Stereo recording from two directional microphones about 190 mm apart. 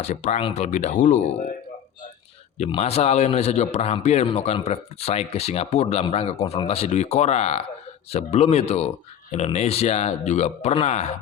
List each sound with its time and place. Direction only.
0.0 s a man's voice: 40° left (ahead or behind)
2.6 s a man's voice: 30° left (ahead or behind)